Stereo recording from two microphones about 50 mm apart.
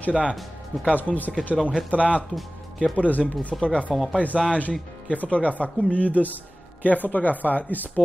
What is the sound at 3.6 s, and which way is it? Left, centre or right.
Speech, left.